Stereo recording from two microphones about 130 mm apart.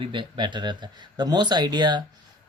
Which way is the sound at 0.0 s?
40° right (ahead or behind).